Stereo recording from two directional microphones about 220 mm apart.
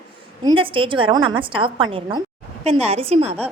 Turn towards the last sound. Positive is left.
turn(degrees=-25)  # may be behind; listen again after turning